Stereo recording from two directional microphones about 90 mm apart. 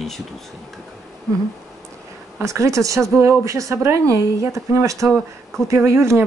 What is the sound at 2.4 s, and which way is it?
Speech, 35° right (ahead or behind).